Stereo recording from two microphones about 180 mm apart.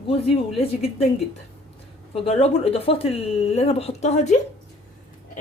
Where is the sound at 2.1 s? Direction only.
35° left (ahead or behind).